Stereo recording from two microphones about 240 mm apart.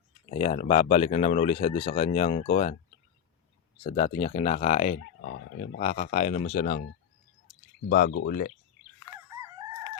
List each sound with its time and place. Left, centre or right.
0.3 s speech: left
3.8 s speech: left
7.9 s speech: left
9.4 s crowing: centre